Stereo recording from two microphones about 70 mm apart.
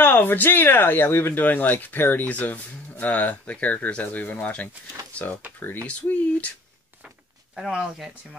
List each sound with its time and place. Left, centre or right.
0.0 s speech: left
7.7 s speech: centre